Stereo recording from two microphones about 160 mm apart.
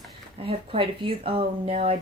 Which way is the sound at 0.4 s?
35° right (ahead or behind).